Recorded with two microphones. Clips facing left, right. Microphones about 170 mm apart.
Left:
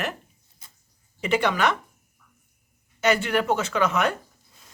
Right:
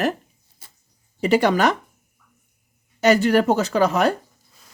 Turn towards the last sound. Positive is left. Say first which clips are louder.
# right 5 dB
turn(degrees=-35)  # may be behind; listen again after turning